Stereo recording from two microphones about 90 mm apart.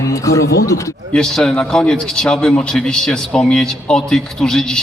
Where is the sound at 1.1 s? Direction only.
5° left (ahead or behind).